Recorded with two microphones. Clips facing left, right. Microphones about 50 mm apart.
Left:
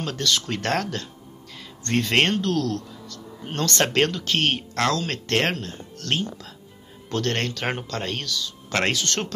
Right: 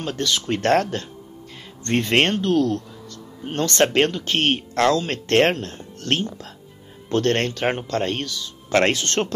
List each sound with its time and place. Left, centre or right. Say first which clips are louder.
0.0 s speech: right 1 dB; right
0.6 s speech: right 6 dB; right